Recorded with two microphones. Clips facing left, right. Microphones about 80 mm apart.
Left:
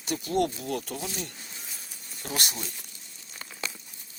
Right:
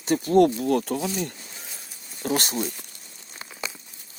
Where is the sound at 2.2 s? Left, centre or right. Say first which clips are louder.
Right 9 dB; right.